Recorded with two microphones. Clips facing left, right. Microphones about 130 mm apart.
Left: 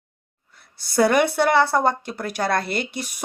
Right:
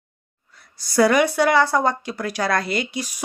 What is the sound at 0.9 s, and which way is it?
Speech, 50° left (ahead or behind).